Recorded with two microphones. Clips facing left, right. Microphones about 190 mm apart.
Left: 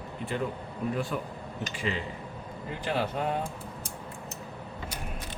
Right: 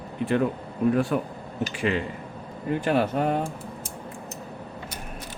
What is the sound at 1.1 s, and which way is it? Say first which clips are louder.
Speech: right 8 dB; 60° right (ahead or behind).